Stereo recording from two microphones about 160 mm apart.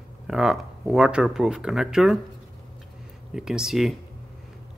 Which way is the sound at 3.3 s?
5° right (ahead or behind).